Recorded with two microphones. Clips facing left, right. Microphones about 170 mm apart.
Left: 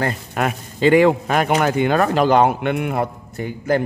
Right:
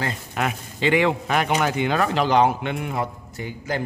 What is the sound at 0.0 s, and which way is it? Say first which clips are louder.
A man's voice: left 5 dB; 45° left (ahead or behind).